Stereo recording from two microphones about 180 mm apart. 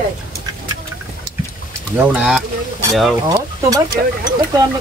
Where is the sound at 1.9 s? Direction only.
5° right (ahead or behind).